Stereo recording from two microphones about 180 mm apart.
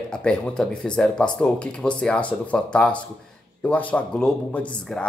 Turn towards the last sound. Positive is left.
turn(degrees=5)  # may be behind; listen again after turning